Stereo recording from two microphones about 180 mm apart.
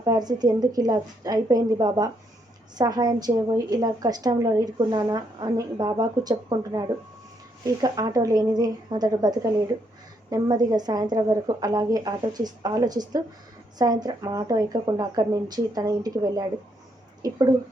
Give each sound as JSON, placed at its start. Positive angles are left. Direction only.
{"t": 0.0, "sound": "a woman's voice", "side_deg": -20}